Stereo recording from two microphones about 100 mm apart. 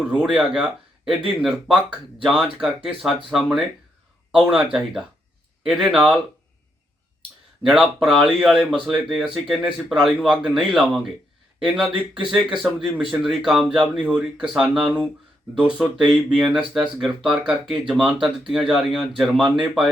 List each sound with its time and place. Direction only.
0.0 s speech: 10° right (ahead or behind)
7.7 s speech: 5° right (ahead or behind)